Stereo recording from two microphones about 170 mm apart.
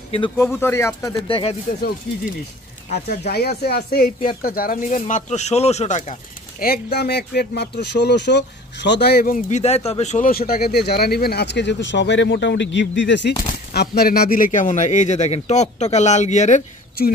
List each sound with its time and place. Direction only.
0.6 s speech: 15° left (ahead or behind)
1.2 s speech: 30° left (ahead or behind)
1.7 s speech: 55° left (ahead or behind)
3.3 s a man's voice: 65° left (ahead or behind); by 6.1 s 45° left (ahead or behind)
6.6 s speech: 65° left (ahead or behind)
9.6 s speech: 35° left (ahead or behind); by 13.3 s 90° left
13.7 s a man's voice: 65° left (ahead or behind); by 16.6 s 45° left (ahead or behind)